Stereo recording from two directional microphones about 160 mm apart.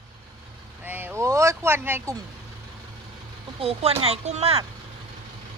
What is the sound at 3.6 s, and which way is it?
Speech, 40° right (ahead or behind).